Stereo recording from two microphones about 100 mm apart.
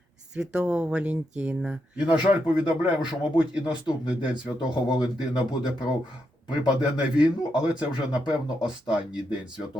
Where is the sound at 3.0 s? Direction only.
50° left (ahead or behind).